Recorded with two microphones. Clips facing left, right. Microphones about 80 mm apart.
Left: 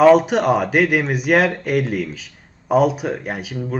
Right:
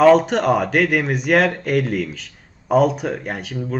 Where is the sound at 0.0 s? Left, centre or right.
Centre.